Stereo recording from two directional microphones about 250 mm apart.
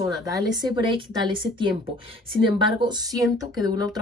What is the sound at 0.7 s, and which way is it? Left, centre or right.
A woman's voice, centre.